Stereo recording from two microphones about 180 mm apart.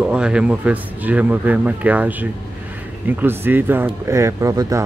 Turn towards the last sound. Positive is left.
turn(degrees=-20)  # may be behind; listen again after turning